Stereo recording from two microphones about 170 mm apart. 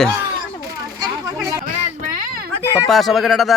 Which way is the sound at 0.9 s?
20° right (ahead or behind).